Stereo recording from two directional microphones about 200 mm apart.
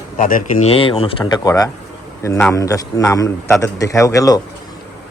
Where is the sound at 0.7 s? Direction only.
25° left (ahead or behind).